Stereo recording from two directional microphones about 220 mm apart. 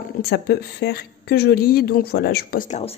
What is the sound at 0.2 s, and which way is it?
A woman's voice, 45° left (ahead or behind).